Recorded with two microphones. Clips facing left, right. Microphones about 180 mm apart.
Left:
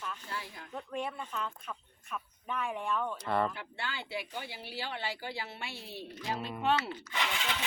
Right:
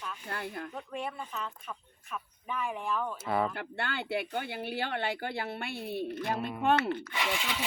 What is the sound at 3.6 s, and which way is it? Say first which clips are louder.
Speech: right 5 dB; 60° right (ahead or behind).